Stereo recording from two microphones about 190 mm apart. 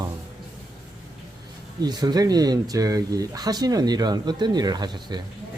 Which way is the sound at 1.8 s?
20° right (ahead or behind).